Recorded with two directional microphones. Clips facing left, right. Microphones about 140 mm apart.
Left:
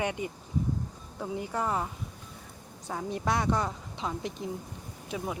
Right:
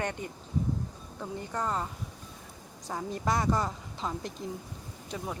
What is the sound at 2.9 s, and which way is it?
Speech, centre (ahead or behind).